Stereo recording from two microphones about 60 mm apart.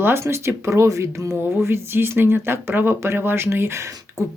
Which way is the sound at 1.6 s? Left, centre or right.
Right.